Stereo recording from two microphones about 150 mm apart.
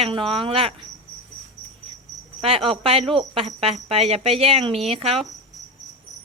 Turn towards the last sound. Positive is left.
turn(degrees=-40)  # may be behind; listen again after turning